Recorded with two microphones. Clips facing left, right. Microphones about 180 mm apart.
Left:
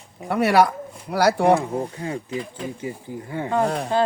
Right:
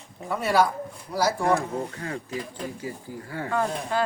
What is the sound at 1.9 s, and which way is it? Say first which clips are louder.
Speech: left 4 dB; 20° left (ahead or behind).